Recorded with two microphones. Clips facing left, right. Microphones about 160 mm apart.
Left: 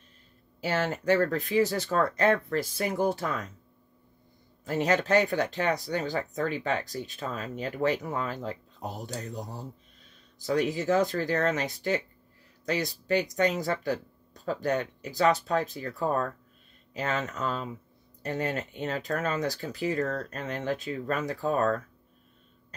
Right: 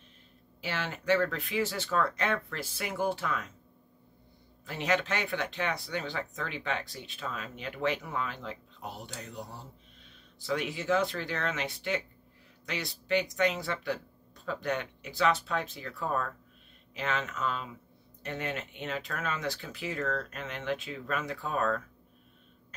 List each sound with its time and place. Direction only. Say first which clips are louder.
0.6 s speech: left 7 dB; 45° left (ahead or behind)
4.6 s speech: left 5 dB; 40° left (ahead or behind)